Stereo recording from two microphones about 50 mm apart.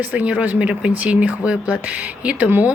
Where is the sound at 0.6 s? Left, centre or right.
Right.